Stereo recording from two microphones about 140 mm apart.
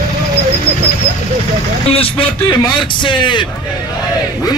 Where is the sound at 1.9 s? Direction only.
40° left (ahead or behind).